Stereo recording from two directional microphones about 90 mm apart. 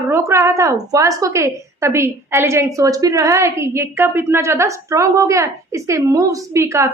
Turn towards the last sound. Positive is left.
turn(degrees=-35)  # may be behind; listen again after turning